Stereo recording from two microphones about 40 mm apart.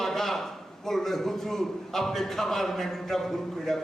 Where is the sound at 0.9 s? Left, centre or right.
Centre.